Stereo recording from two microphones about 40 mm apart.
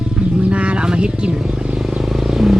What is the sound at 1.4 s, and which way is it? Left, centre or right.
Vehicle, centre.